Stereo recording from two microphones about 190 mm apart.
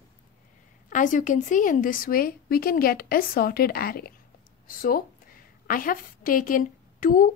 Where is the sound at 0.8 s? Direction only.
45° left (ahead or behind).